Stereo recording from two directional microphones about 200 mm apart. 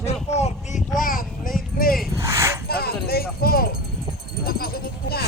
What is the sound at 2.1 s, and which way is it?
Dog, 15° right (ahead or behind).